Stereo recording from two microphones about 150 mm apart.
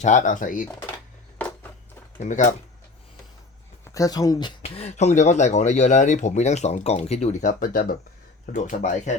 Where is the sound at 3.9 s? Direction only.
25° left (ahead or behind); by 7.9 s 70° left (ahead or behind).